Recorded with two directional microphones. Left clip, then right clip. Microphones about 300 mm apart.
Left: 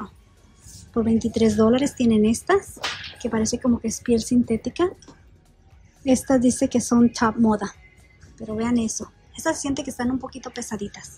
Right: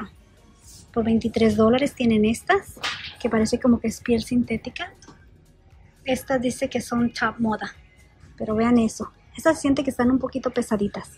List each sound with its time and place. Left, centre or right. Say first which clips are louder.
0.9 s speech: even; centre
6.0 s speech: left 4 dB; centre